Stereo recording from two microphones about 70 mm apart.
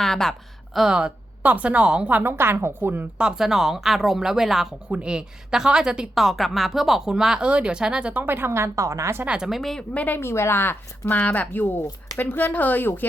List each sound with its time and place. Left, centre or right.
0.0 s a sound: centre
0.8 s a woman's voice: centre
2.2 s a woman's voice: right
3.2 s speech: centre
4.9 s a woman's voice: centre
8.2 s a woman's voice: right
9.2 s a woman's voice: centre
9.5 s speech: centre
9.9 s speech: centre
10.2 s speech: left